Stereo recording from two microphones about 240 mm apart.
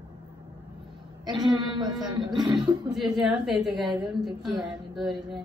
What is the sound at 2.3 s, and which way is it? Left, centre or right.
Speech, centre.